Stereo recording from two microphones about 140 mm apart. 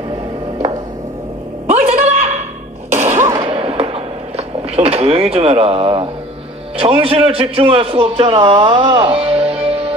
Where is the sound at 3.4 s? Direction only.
45° right (ahead or behind).